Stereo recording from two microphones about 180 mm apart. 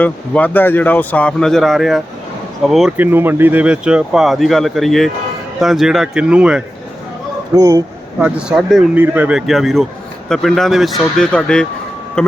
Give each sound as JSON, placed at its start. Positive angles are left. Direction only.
{"t": 0.0, "sound": "speech", "side_deg": 10}
{"t": 7.5, "sound": "speech", "side_deg": -20}
{"t": 8.2, "sound": "speech", "side_deg": -5}